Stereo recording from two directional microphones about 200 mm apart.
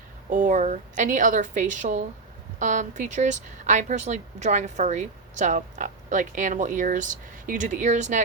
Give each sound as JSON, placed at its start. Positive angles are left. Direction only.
{"t": 0.3, "sound": "speech", "side_deg": -40}